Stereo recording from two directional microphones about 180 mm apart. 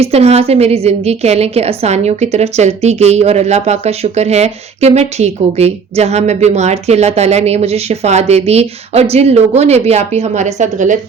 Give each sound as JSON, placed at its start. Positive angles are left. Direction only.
{"t": 0.0, "sound": "a woman's voice", "side_deg": -35}